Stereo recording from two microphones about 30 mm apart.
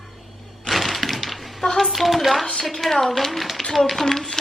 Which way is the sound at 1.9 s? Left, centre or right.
Centre.